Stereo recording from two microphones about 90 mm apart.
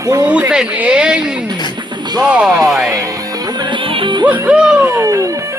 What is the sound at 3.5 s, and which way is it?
Music, 70° right (ahead or behind).